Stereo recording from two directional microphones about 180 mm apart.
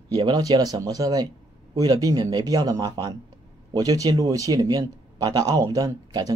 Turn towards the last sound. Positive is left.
turn(degrees=-20)  # may be behind; listen again after turning